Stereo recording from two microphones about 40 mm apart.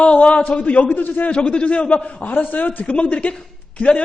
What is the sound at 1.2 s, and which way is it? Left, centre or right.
A man's voice, left.